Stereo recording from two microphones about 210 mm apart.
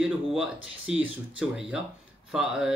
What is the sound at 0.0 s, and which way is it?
Speech, centre (ahead or behind).